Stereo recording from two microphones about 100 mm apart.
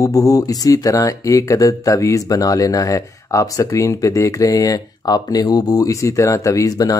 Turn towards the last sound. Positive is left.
turn(degrees=35)  # may be behind; listen again after turning